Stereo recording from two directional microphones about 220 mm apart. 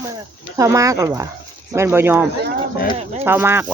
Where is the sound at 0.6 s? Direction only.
15° right (ahead or behind).